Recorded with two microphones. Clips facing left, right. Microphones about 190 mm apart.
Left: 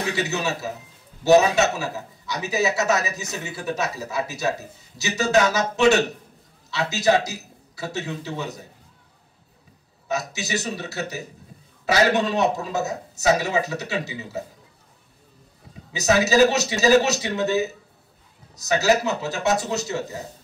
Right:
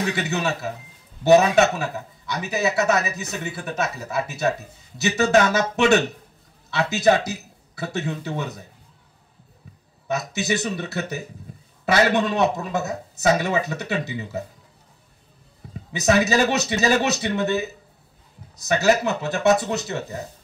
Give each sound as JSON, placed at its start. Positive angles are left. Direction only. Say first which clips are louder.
{"t": 0.1, "sound": "speech", "louder": "right 1 dB", "side_deg": -55}
{"t": 1.8, "sound": "a man's voice", "louder": "right 1 dB", "side_deg": -55}
{"t": 10.0, "sound": "speech", "louder": "right 3 dB", "side_deg": -55}
{"t": 15.9, "sound": "speech", "louder": "even", "side_deg": -55}